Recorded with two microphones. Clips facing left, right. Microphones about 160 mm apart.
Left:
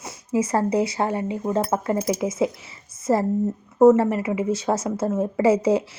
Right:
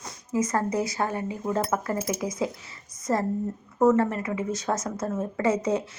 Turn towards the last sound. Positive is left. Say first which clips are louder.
# left 6 dB
turn(degrees=30)  # may be behind; listen again after turning